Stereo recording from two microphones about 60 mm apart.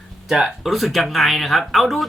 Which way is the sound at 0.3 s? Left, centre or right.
Centre.